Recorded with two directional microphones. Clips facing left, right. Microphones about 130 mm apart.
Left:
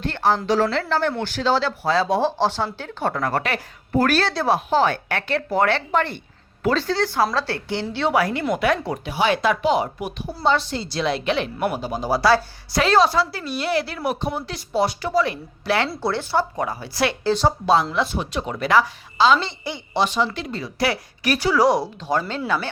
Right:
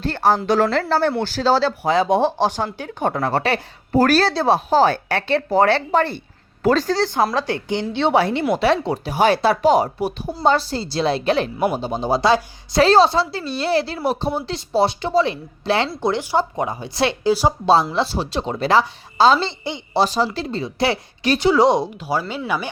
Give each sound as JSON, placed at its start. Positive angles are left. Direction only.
{"t": 0.0, "sound": "a woman's voice", "side_deg": -40}
{"t": 0.4, "sound": "a woman's voice", "side_deg": -55}
{"t": 1.8, "sound": "speech", "side_deg": -20}
{"t": 3.2, "sound": "a woman's voice", "side_deg": -30}
{"t": 7.3, "sound": "a woman's voice", "side_deg": -15}
{"t": 9.0, "sound": "a woman's voice", "side_deg": -40}
{"t": 17.2, "sound": "speech", "side_deg": -10}
{"t": 17.9, "sound": "a woman's voice", "side_deg": -30}
{"t": 22.0, "sound": "speech", "side_deg": -10}